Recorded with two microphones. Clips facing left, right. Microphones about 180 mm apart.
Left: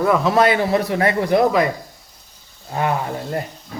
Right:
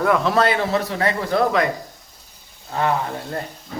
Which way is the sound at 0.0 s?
5° left (ahead or behind).